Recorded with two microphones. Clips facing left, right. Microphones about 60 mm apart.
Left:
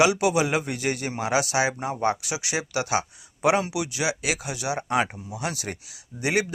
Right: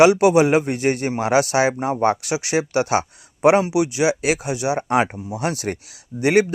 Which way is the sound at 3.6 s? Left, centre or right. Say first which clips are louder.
Right 8 dB; right.